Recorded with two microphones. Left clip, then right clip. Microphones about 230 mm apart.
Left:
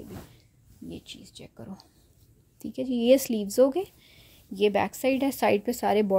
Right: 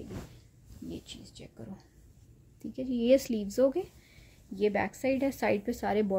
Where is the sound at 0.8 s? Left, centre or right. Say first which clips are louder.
Left 2 dB; left.